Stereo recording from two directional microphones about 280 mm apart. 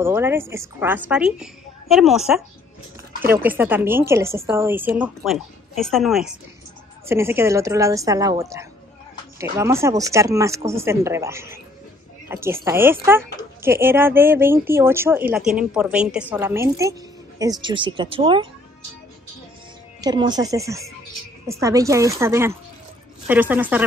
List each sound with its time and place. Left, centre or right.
0.0 s speech: centre
3.4 s speech: centre
20.0 s speech: centre